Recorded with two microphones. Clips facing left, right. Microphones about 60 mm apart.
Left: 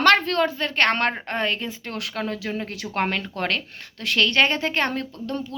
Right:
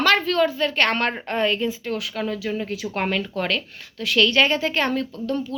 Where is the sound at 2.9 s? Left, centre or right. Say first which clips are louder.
Left 1 dB; left.